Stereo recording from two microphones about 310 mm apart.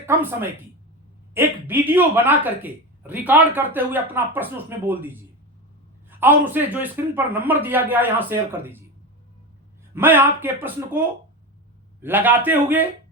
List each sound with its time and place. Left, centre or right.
0.0 s a man's voice: centre
9.9 s a man's voice: centre